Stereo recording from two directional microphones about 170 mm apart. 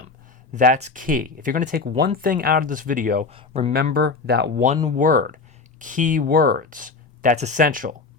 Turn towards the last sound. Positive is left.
turn(degrees=-55)  # may be behind; listen again after turning